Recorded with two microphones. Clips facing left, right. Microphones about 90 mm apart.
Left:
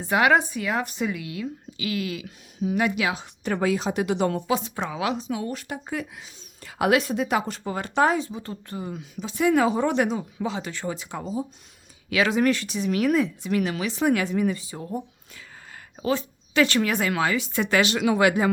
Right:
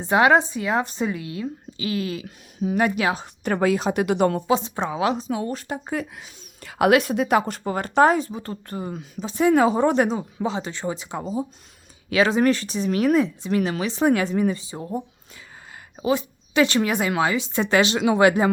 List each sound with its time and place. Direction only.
0.0 s speech: 30° right (ahead or behind); by 4.4 s 50° right (ahead or behind)
4.4 s speech: 25° right (ahead or behind)
6.1 s speech: 60° right (ahead or behind); by 18.5 s 30° right (ahead or behind)